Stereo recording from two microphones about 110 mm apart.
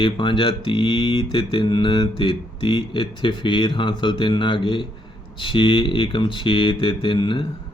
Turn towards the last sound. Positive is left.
turn(degrees=50)  # may be behind; listen again after turning